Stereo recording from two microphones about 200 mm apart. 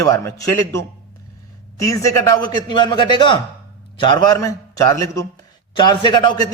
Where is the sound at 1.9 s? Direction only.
15° left (ahead or behind).